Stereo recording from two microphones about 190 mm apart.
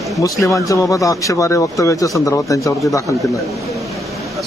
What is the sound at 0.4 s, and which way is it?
A man's voice, 15° left (ahead or behind).